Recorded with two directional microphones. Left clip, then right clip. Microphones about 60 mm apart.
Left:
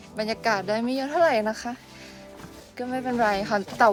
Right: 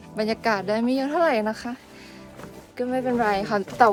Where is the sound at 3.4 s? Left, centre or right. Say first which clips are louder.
Right 2 dB; right.